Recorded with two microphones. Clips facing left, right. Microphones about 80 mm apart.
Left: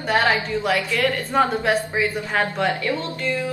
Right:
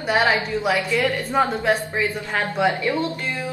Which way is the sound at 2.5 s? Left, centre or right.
Centre.